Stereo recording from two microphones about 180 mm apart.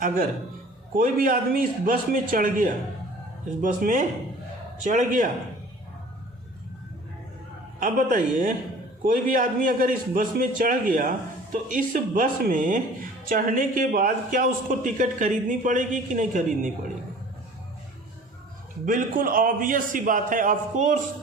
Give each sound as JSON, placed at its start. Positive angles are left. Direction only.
{"t": 0.9, "sound": "a man's voice", "side_deg": -50}
{"t": 7.8, "sound": "a man's voice", "side_deg": -50}
{"t": 18.9, "sound": "a man's voice", "side_deg": -50}